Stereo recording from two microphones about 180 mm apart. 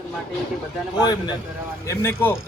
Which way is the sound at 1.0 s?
25° left (ahead or behind).